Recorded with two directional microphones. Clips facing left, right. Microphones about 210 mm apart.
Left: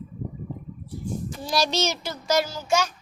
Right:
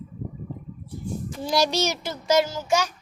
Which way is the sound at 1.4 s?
20° right (ahead or behind).